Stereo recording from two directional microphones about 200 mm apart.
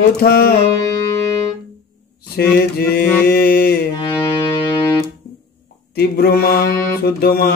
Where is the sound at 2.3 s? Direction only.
50° left (ahead or behind).